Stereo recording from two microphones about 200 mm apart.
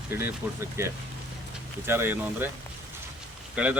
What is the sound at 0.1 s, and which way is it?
Speech, 10° right (ahead or behind).